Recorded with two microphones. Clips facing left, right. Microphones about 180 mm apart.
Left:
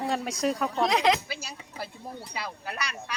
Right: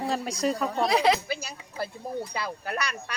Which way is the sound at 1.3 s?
50° right (ahead or behind).